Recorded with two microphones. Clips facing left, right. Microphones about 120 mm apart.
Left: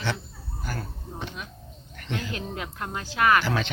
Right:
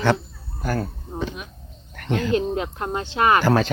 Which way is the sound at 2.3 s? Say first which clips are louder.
Right 12 dB; 25° right (ahead or behind).